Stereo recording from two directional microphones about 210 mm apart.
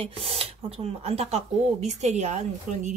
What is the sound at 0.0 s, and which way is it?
Speech, 30° right (ahead or behind).